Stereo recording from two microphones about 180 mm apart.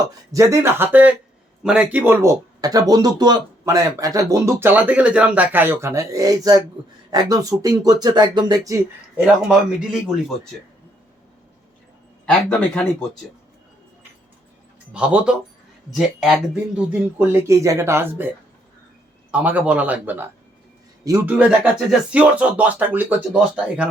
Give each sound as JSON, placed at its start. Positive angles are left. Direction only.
{"t": 0.3, "sound": "speech", "side_deg": -15}
{"t": 9.1, "sound": "speech", "side_deg": -5}
{"t": 12.2, "sound": "speech", "side_deg": 5}
{"t": 14.9, "sound": "speech", "side_deg": -5}
{"t": 19.3, "sound": "speech", "side_deg": -10}